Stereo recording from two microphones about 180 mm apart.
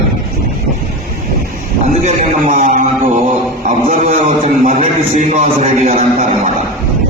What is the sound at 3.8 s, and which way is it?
A man's voice, 40° right (ahead or behind).